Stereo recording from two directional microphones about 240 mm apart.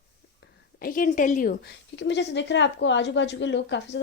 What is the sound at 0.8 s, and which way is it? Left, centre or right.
Speech, left.